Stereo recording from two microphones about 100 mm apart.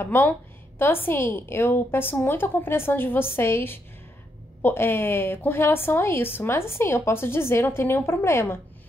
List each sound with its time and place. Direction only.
0.0 s a woman's voice: 20° left (ahead or behind)